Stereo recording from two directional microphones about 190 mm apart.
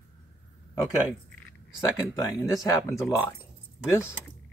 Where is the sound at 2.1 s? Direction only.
20° left (ahead or behind).